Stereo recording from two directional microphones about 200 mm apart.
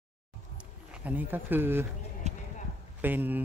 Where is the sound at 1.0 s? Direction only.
10° right (ahead or behind).